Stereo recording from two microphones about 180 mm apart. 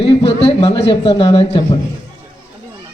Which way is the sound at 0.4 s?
25° left (ahead or behind).